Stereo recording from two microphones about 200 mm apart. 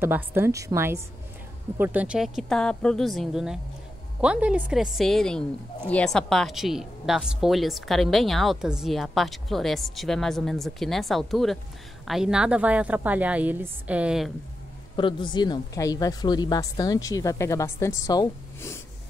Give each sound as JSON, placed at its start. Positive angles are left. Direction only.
{"t": 0.0, "sound": "a woman's voice", "side_deg": -10}
{"t": 15.0, "sound": "a woman's voice", "side_deg": 25}